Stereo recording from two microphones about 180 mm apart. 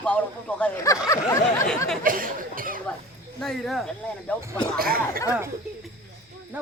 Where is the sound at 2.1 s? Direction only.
50° right (ahead or behind).